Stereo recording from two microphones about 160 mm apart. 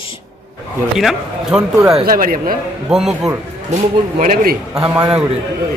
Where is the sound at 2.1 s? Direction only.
60° right (ahead or behind).